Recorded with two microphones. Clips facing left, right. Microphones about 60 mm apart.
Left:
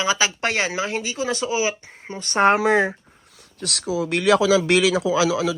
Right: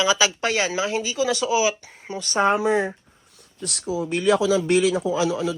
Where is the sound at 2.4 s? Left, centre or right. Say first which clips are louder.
Left 3 dB; left.